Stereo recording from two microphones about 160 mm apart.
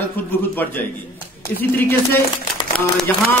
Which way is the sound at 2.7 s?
5° left (ahead or behind).